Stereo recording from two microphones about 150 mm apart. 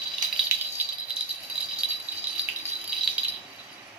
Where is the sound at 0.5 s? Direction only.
15° right (ahead or behind).